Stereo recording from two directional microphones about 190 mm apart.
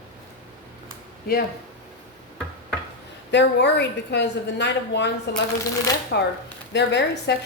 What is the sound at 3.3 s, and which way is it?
A woman's voice, 65° left (ahead or behind).